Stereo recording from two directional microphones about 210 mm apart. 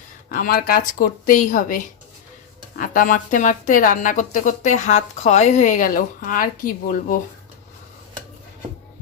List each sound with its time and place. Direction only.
0.3 s a woman's voice: 45° left (ahead or behind)